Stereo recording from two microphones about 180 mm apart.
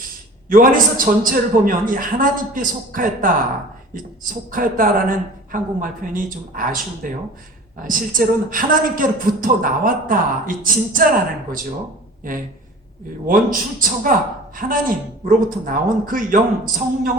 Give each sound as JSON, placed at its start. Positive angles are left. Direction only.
{"t": 0.5, "sound": "a woman's voice", "side_deg": -50}
{"t": 12.2, "sound": "a woman's voice", "side_deg": -50}